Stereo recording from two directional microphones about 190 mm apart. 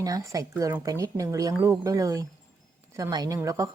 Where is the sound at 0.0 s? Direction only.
20° right (ahead or behind).